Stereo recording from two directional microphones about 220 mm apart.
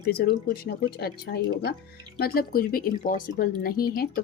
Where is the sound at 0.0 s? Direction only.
45° left (ahead or behind).